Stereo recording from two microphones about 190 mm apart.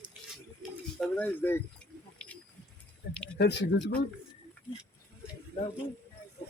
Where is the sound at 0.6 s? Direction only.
5° left (ahead or behind).